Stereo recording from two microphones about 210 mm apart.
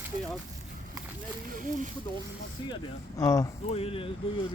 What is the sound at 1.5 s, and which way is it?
Speech, 40° right (ahead or behind).